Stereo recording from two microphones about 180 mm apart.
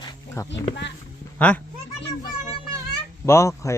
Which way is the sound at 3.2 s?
15° left (ahead or behind).